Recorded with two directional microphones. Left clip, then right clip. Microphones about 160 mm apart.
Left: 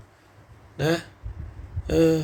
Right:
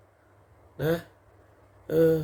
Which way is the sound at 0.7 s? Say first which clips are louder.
Left 3 dB; 20° right (ahead or behind).